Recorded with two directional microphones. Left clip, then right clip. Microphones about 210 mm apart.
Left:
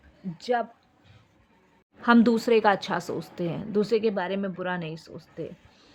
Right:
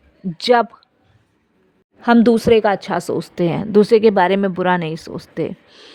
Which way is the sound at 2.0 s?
25° right (ahead or behind).